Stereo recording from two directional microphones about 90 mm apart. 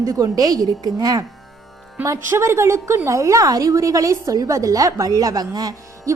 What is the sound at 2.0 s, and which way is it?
A woman's voice, 30° right (ahead or behind).